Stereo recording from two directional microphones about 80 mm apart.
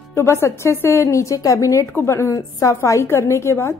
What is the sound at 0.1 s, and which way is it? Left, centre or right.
A woman's voice, left.